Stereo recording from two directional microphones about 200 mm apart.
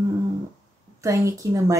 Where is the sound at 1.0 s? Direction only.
15° right (ahead or behind).